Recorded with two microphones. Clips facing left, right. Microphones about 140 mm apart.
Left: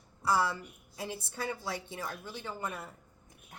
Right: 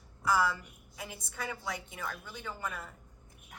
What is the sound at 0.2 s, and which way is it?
A woman's voice, 30° left (ahead or behind).